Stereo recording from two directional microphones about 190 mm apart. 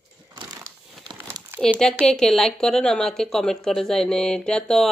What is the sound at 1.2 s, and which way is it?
Crumpling, 10° right (ahead or behind).